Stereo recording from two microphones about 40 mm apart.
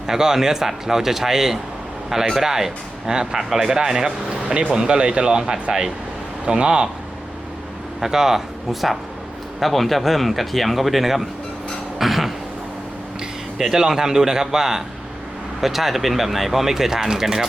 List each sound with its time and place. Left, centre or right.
0.1 s speech: centre
8.0 s speech: centre
11.9 s a sound: centre
13.6 s speech: centre